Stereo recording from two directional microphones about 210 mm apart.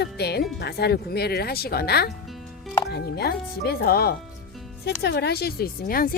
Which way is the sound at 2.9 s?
50° left (ahead or behind).